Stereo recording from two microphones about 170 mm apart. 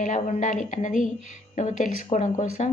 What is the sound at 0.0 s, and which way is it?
A woman's voice, 45° left (ahead or behind).